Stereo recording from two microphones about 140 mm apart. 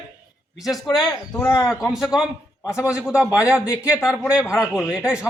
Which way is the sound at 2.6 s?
20° left (ahead or behind).